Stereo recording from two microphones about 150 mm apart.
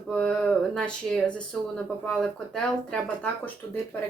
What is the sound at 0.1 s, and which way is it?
Speech, 5° left (ahead or behind).